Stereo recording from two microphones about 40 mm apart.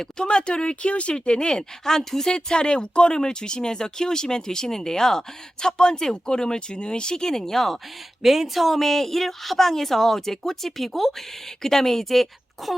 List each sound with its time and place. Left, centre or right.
0.0 s speech: left
8.2 s speech: centre